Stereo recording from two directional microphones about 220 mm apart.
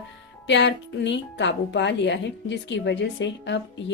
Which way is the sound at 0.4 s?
55° left (ahead or behind).